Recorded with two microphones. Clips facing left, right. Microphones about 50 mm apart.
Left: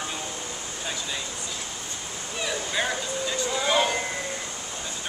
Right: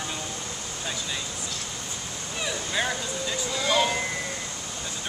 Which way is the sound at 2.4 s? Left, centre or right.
Centre.